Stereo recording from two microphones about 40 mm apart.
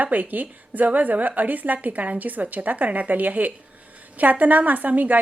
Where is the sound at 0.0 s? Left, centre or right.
Right.